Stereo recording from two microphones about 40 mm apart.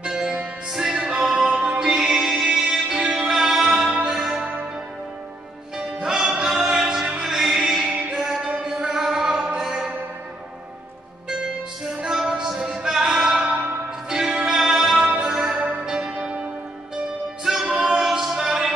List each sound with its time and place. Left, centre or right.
0.0 s music: centre
3.4 s music: centre
5.8 s music: centre
12.1 s music: centre
17.5 s music: centre
17.7 s a capella: centre
18.3 s music: centre